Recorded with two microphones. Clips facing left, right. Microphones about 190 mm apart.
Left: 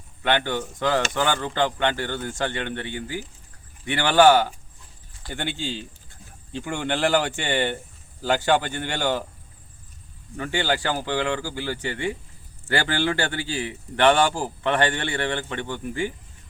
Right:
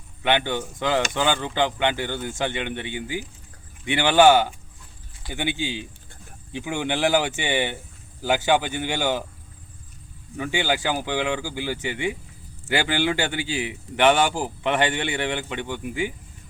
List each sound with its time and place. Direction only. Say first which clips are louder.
0.2 s a man's voice: right 1 dB; 15° right (ahead or behind)
10.3 s a man's voice: even; 10° right (ahead or behind)